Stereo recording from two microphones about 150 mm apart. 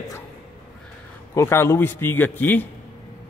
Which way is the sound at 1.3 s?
15° left (ahead or behind).